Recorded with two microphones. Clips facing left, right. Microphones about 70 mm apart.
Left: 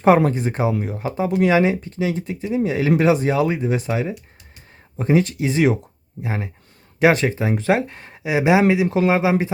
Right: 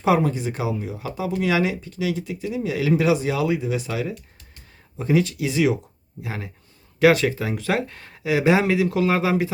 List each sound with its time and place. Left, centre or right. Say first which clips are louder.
0.3 s speech: left 4 dB; left
0.7 s speech: left 4 dB; left
1.0 s speech: left 5 dB; left